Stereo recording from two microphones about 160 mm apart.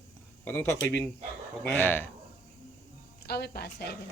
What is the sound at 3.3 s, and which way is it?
Speech, 85° left.